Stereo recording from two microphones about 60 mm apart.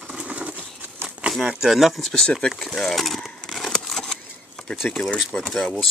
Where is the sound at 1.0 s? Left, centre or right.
Centre.